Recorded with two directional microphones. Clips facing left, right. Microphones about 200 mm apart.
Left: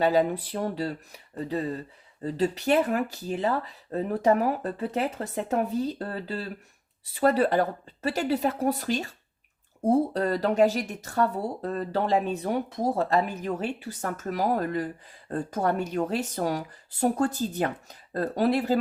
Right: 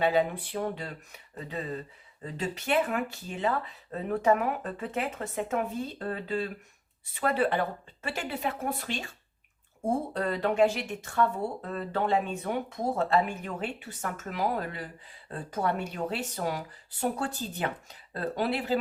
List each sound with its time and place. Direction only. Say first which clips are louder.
0.0 s speech: left 3 dB; 40° left (ahead or behind)